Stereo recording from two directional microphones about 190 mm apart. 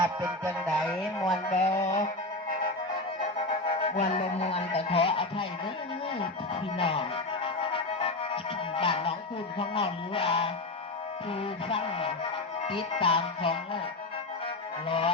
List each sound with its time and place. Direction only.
0.0 s music: 20° right (ahead or behind)
0.7 s speech: 5° left (ahead or behind)
1.5 s music: 35° left (ahead or behind)
3.8 s music: 30° left (ahead or behind)
14.8 s music: 30° left (ahead or behind)